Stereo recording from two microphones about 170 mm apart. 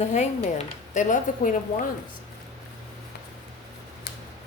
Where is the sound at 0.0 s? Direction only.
40° left (ahead or behind).